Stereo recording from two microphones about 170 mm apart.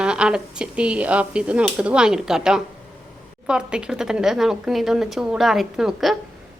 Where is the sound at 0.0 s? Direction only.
5° right (ahead or behind).